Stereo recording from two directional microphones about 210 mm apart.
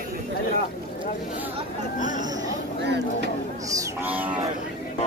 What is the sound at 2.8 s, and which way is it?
Vehicle, 55° right (ahead or behind).